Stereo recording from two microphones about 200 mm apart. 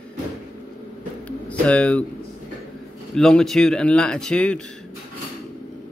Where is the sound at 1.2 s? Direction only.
5° left (ahead or behind).